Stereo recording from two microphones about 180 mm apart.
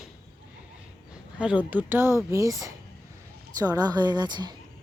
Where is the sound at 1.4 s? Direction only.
5° right (ahead or behind).